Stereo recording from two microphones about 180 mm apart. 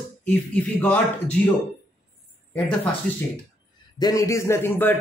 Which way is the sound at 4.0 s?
20° left (ahead or behind).